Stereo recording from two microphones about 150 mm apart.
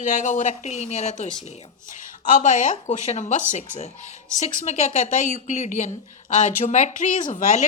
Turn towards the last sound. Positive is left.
turn(degrees=60)  # may be behind; listen again after turning